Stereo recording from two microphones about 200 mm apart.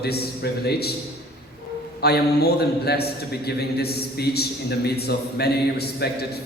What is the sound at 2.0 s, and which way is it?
A man's voice, 55° left (ahead or behind).